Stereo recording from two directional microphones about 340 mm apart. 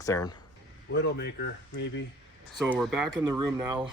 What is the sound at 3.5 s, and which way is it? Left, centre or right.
Speech, centre.